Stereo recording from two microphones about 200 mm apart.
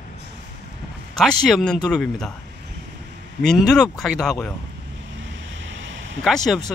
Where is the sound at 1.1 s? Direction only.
Centre (ahead or behind).